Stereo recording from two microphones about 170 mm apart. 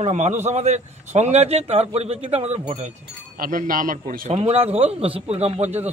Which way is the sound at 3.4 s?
55° right (ahead or behind).